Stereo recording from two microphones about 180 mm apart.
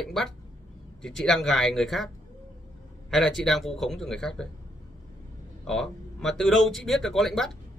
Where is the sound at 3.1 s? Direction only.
Centre (ahead or behind).